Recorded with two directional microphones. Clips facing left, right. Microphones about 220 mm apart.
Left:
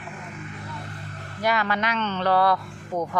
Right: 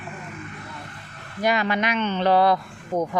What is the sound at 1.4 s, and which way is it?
Speech, 20° right (ahead or behind).